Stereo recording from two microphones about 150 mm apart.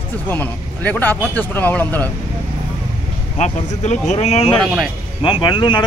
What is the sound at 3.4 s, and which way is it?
Speech, 50° left (ahead or behind).